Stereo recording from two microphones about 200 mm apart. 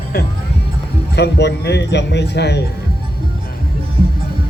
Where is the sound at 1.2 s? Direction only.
55° left (ahead or behind).